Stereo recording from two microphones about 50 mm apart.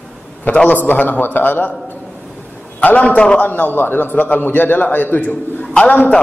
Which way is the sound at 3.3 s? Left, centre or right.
Left.